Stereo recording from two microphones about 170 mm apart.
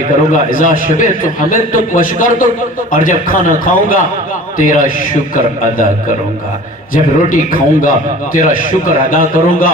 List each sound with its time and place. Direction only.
0.3 s a man's voice: 50° left (ahead or behind)